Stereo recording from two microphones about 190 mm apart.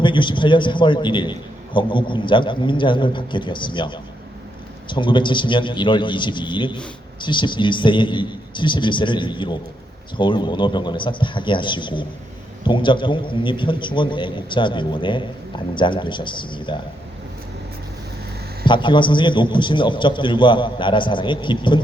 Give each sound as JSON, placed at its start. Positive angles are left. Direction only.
{"t": 0.0, "sound": "a man's voice", "side_deg": 25}
{"t": 18.6, "sound": "a man's voice", "side_deg": 25}